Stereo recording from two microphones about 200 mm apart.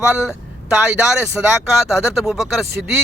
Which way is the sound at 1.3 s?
Centre (ahead or behind).